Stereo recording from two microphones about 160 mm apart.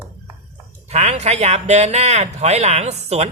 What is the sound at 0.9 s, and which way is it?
Speech, 45° right (ahead or behind).